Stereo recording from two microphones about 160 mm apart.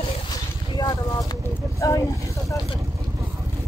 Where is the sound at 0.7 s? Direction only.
25° left (ahead or behind).